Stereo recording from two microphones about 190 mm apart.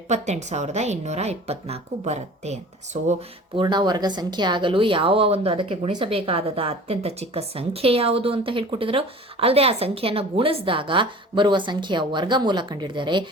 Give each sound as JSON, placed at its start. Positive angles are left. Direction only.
{"t": 0.1, "sound": "a woman's voice", "side_deg": -35}